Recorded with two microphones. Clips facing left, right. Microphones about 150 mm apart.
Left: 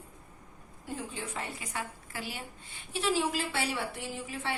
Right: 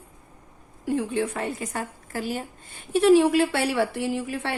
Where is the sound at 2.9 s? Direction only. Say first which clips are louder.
Right 13 dB; 60° right (ahead or behind).